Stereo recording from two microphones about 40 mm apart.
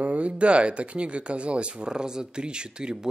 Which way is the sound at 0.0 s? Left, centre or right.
Right.